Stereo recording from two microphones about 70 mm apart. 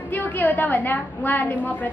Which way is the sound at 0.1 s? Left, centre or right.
Left.